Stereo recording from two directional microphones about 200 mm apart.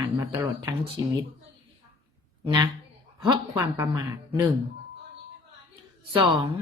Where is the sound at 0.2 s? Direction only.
15° right (ahead or behind).